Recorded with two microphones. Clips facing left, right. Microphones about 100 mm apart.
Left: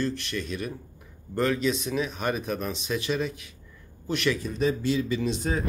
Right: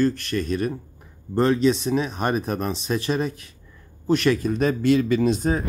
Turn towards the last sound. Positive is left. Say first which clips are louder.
# right 7 dB
turn(degrees=-45)  # may be behind; listen again after turning